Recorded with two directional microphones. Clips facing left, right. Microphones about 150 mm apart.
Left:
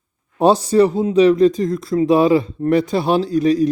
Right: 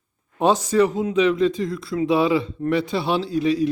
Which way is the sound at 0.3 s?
35° left (ahead or behind).